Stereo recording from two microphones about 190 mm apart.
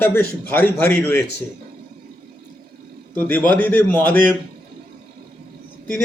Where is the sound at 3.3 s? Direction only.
10° left (ahead or behind).